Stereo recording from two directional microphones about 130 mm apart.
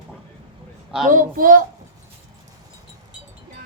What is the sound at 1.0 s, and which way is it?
Speech, 90° right.